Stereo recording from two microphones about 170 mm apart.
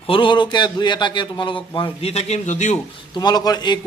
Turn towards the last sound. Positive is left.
turn(degrees=25)  # may be behind; listen again after turning